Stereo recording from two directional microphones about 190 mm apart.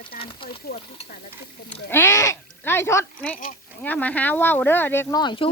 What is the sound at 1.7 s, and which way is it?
Speech, 10° left (ahead or behind).